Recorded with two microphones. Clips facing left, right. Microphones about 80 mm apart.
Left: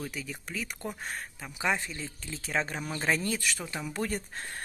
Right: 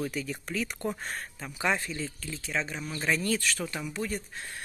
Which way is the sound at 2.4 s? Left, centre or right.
Left.